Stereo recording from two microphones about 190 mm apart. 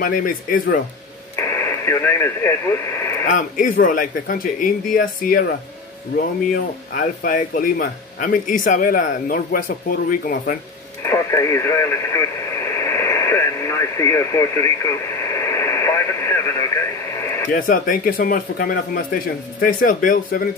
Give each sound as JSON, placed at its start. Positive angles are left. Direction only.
{"t": 0.0, "sound": "speech", "side_deg": 45}
{"t": 1.3, "sound": "speech", "side_deg": 15}
{"t": 3.3, "sound": "speech", "side_deg": 45}
{"t": 11.0, "sound": "speech", "side_deg": 15}
{"t": 12.7, "sound": "radio", "side_deg": 15}
{"t": 17.5, "sound": "speech", "side_deg": 50}